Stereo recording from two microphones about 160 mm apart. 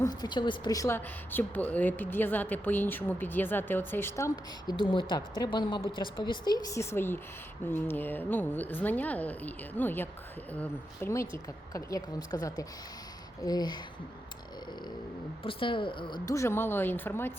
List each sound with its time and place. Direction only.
0.0 s a woman's voice: 25° left (ahead or behind)
15.4 s a woman's voice: 30° left (ahead or behind); by 17.3 s 15° left (ahead or behind)